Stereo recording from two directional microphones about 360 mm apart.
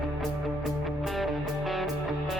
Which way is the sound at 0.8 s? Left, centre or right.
Centre.